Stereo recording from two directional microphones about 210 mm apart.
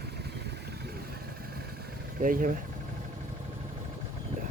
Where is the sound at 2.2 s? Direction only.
40° right (ahead or behind).